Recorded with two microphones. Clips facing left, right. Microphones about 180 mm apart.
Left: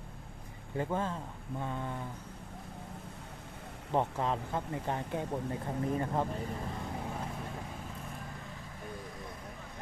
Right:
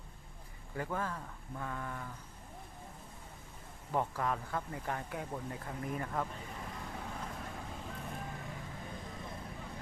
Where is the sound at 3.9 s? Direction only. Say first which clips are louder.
Left 3 dB; 25° left (ahead or behind).